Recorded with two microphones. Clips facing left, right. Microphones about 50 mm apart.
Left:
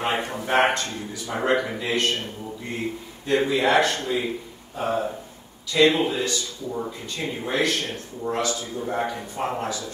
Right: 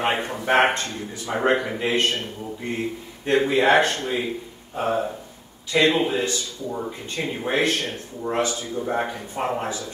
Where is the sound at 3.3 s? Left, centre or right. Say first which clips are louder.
Right 2 dB; right.